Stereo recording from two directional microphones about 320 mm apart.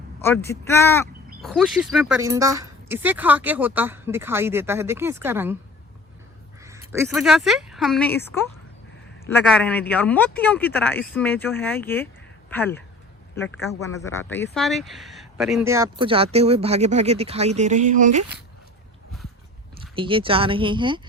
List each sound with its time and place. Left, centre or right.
0.2 s speech: centre
6.9 s a man's voice: centre; by 18.2 s right
20.0 s speech: centre